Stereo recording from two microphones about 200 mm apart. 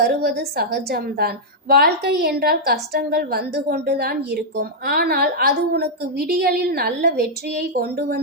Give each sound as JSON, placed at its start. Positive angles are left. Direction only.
{"t": 0.0, "sound": "a woman's voice", "side_deg": -50}